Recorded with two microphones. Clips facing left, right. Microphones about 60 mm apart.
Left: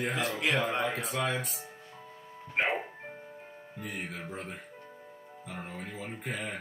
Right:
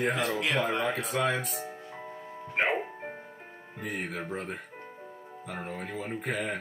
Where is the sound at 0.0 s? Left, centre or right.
Centre.